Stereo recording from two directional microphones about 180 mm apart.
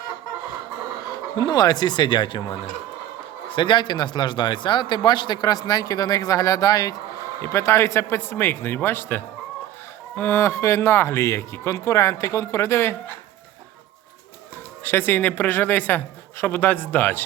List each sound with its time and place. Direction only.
1.4 s a man's voice: 20° left (ahead or behind)
3.5 s a man's voice: 25° left (ahead or behind)
14.8 s speech: 10° left (ahead or behind)